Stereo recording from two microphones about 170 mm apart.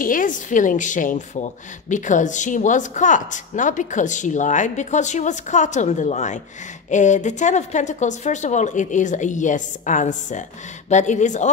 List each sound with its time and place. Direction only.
0.0 s speech: 50° left (ahead or behind)